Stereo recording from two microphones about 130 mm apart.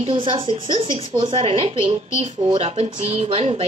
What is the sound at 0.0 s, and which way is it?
A woman's voice, 45° right (ahead or behind).